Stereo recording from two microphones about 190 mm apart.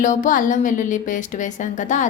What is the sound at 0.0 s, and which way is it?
Speech, 40° left (ahead or behind).